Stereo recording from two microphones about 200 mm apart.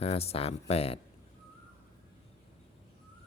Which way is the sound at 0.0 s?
30° left (ahead or behind).